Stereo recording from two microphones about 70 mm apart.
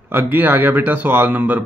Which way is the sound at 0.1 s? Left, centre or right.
Right.